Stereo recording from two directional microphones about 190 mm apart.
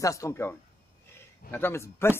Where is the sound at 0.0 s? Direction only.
15° left (ahead or behind).